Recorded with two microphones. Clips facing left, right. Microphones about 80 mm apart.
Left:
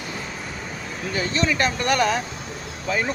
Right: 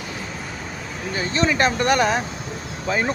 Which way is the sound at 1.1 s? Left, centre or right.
Right.